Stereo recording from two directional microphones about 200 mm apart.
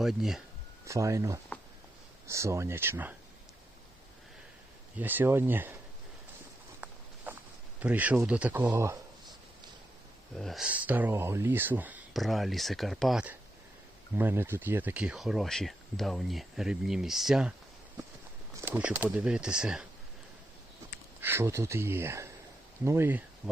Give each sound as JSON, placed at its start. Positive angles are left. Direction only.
{"t": 0.0, "sound": "speech", "side_deg": 0}
{"t": 0.9, "sound": "speech", "side_deg": -15}
{"t": 4.9, "sound": "speech", "side_deg": -10}
{"t": 7.3, "sound": "walk", "side_deg": -10}
{"t": 7.8, "sound": "speech", "side_deg": -5}
{"t": 10.3, "sound": "speech", "side_deg": 0}
{"t": 18.5, "sound": "speech", "side_deg": -15}
{"t": 21.2, "sound": "speech", "side_deg": -10}